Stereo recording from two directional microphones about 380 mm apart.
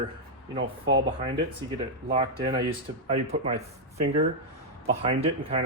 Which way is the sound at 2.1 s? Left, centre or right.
Centre.